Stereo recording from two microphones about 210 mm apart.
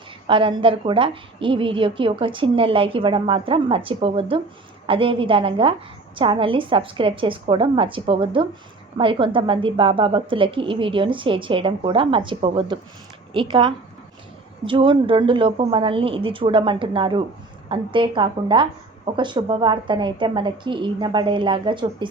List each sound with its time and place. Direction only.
0.3 s speech: 25° right (ahead or behind)